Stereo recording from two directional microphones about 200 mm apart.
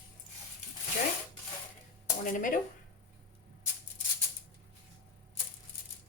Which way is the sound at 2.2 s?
40° left (ahead or behind).